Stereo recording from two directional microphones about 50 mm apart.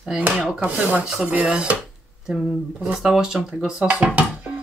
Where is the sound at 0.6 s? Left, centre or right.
Right.